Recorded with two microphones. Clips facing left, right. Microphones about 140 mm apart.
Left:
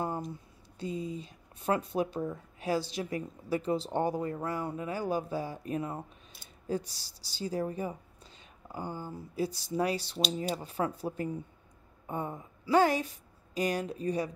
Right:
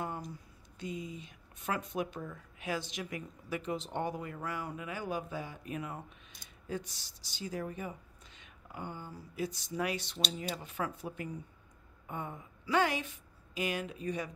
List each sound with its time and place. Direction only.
0.3 s a woman's voice: 30° left (ahead or behind)